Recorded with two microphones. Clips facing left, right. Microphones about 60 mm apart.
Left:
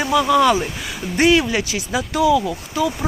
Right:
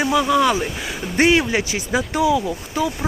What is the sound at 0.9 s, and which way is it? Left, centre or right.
Speech, right.